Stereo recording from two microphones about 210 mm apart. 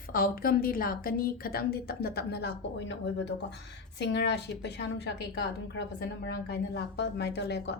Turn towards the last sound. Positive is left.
turn(degrees=55)  # may be behind; listen again after turning